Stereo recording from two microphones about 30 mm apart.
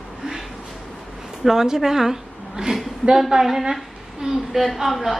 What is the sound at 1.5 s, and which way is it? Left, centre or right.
Speech, centre.